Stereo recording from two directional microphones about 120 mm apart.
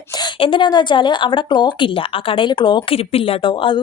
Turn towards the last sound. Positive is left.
turn(degrees=45)  # may be behind; listen again after turning